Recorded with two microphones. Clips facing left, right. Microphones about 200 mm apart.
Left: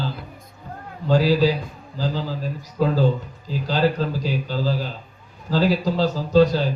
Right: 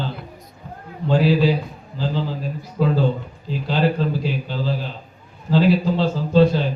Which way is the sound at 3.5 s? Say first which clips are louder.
Even; 40° left (ahead or behind).